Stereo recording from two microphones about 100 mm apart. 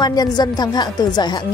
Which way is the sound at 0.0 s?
40° left (ahead or behind).